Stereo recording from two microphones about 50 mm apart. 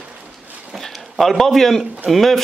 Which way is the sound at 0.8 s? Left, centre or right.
Centre.